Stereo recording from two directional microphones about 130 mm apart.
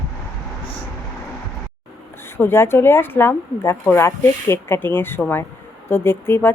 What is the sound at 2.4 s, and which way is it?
Speech, 20° left (ahead or behind).